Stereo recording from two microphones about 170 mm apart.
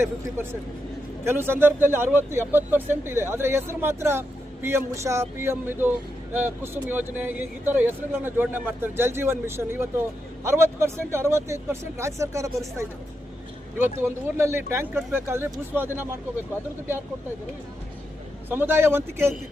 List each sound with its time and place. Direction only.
1.2 s speech: 15° right (ahead or behind)
18.4 s speech: 10° right (ahead or behind)